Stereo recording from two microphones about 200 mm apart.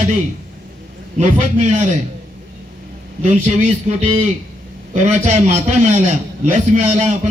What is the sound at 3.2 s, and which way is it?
A man's voice, 35° right (ahead or behind).